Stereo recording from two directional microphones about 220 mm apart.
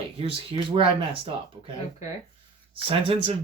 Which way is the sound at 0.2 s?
25° right (ahead or behind).